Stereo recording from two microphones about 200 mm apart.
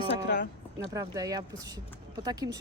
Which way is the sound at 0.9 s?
15° right (ahead or behind).